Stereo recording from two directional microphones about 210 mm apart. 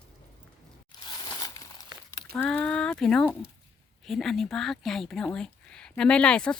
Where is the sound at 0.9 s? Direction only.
20° left (ahead or behind).